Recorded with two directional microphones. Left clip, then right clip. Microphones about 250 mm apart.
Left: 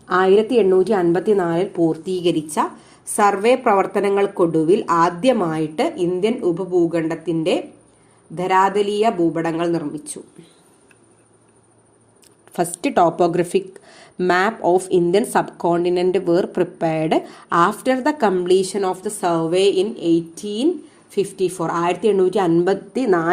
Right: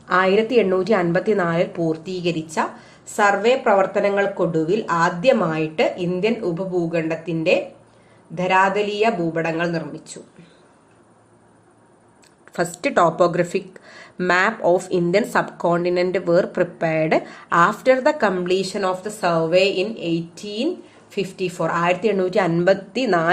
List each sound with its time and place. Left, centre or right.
0.1 s a woman's voice: left
12.5 s speech: left